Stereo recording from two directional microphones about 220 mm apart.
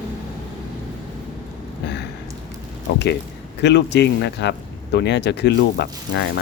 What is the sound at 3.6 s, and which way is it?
Speech, 50° left (ahead or behind).